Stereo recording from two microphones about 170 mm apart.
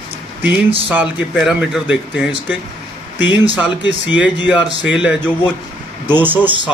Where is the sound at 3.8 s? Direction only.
90° left.